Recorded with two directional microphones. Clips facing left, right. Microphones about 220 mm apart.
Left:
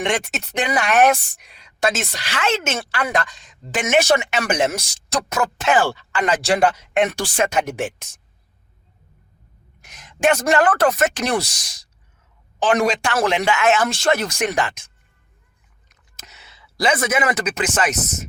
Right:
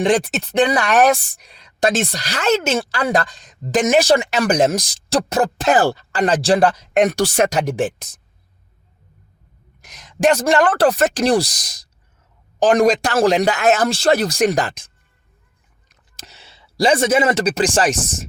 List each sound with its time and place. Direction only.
0.0 s speech: 35° right (ahead or behind)
9.8 s speech: 35° right (ahead or behind)
15.9 s speech: 30° right (ahead or behind)